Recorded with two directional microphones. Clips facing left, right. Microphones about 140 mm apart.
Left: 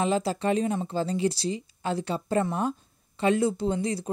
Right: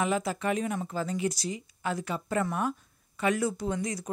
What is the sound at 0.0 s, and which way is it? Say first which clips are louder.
A woman's voice: left 3 dB; 30° left (ahead or behind).